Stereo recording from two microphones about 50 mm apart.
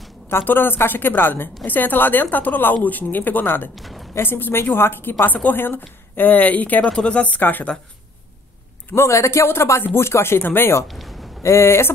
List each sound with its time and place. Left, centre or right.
0.3 s a woman's voice: left
3.7 s a woman's voice: centre
4.2 s a woman's voice: left
5.2 s speech: left
6.8 s speech: centre
7.2 s speech: left
8.9 s speech: left
10.4 s a woman's voice: left
10.9 s a sound: centre
11.4 s speech: left